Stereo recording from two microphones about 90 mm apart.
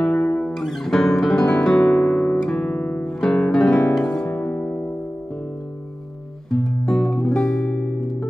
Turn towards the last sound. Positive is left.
turn(degrees=5)  # may be behind; listen again after turning